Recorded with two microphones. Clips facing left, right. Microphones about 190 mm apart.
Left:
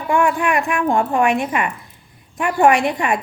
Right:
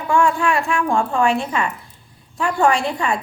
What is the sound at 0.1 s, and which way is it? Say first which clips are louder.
A woman's voice: even; 15° left (ahead or behind).